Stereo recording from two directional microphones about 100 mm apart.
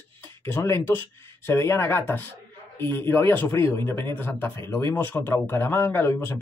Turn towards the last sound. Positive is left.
turn(degrees=25)  # may be behind; listen again after turning